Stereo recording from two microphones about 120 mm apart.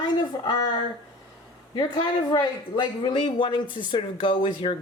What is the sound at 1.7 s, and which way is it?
Speech, 40° left (ahead or behind).